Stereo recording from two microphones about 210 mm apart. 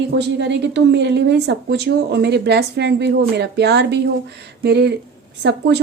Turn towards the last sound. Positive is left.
turn(degrees=-55)  # may be behind; listen again after turning